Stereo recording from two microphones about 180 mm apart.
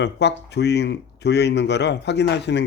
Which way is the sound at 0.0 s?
70° left (ahead or behind).